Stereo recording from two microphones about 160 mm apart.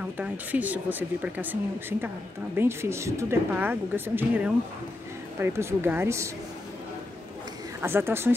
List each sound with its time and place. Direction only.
0.2 s a woman's voice: 10° right (ahead or behind)
7.8 s a woman's voice: 15° right (ahead or behind)